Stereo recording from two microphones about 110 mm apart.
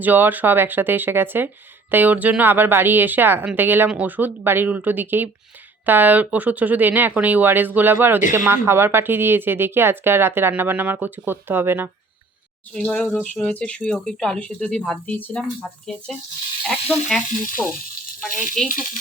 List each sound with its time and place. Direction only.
0.0 s speech: 15° right (ahead or behind)
12.7 s speech: 5° left (ahead or behind)
17.6 s speech: 15° left (ahead or behind)
18.2 s speech: 5° left (ahead or behind)